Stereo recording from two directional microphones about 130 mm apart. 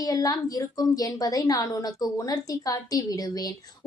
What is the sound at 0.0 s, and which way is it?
A woman's voice, 30° left (ahead or behind).